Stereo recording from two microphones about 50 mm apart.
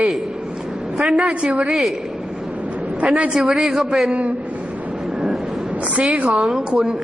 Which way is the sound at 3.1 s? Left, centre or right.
Centre.